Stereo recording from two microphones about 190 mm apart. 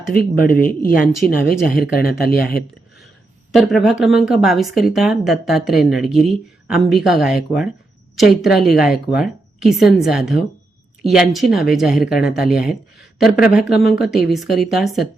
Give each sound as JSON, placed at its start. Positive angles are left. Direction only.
{"t": 0.1, "sound": "speech", "side_deg": 45}
{"t": 3.5, "sound": "speech", "side_deg": 0}